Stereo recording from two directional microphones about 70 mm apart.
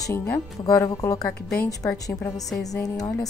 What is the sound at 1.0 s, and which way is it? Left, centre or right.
Speech, left.